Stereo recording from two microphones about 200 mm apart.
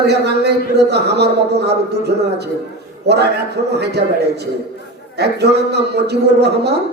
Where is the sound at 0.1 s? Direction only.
55° right (ahead or behind).